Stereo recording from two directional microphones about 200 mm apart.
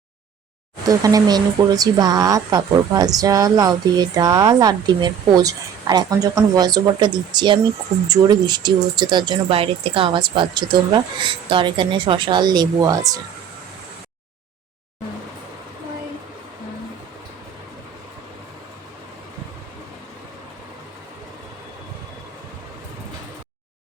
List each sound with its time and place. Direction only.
0.9 s speech: 20° right (ahead or behind)